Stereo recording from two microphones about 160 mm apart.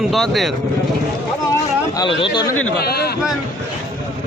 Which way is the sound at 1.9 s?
30° left (ahead or behind).